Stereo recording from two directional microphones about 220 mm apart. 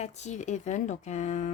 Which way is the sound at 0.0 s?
30° left (ahead or behind).